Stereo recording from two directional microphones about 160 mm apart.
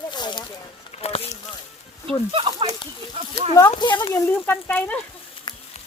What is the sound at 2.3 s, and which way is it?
Speech, 35° right (ahead or behind).